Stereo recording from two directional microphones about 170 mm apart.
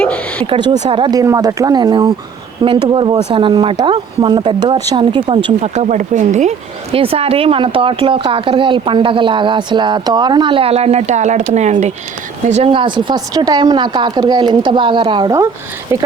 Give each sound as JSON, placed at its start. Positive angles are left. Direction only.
{"t": 0.0, "sound": "a sound", "side_deg": 10}
{"t": 0.5, "sound": "speech", "side_deg": -25}
{"t": 5.6, "sound": "speech", "side_deg": -40}
{"t": 6.9, "sound": "speech", "side_deg": -35}
{"t": 15.9, "sound": "speech", "side_deg": -15}